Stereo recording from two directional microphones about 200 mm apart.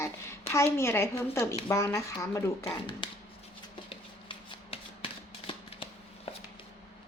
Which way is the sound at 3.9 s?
25° left (ahead or behind).